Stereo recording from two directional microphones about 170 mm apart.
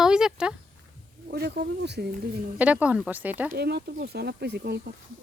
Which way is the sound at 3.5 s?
70° right (ahead or behind).